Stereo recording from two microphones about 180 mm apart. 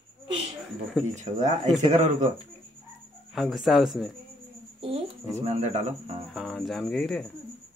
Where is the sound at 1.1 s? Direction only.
40° right (ahead or behind).